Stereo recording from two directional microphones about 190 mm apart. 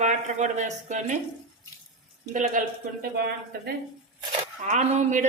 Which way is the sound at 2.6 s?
45° right (ahead or behind).